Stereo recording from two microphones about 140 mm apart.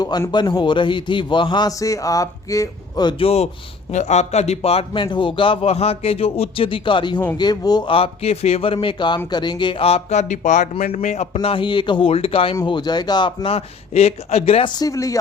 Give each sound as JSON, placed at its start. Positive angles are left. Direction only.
{"t": 0.0, "sound": "a man's voice", "side_deg": 30}
{"t": 11.3, "sound": "a man's voice", "side_deg": 40}
{"t": 14.8, "sound": "a man's voice", "side_deg": 25}